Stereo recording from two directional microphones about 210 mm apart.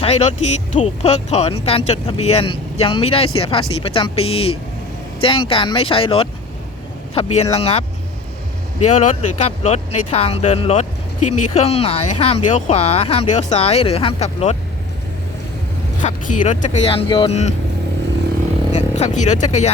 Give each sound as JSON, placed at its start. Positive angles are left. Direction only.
{"t": 0.0, "sound": "speech", "side_deg": 30}
{"t": 16.0, "sound": "speech", "side_deg": 40}
{"t": 18.7, "sound": "speech", "side_deg": 30}